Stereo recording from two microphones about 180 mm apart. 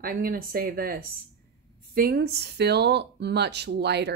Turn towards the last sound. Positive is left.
turn(degrees=-70)  # may be behind; listen again after turning